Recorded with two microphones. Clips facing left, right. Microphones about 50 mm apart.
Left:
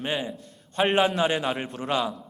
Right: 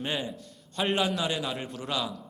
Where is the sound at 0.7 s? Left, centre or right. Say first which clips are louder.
Left 5 dB; left.